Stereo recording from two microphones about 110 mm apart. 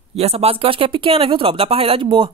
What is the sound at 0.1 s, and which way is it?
Speech, 70° right (ahead or behind).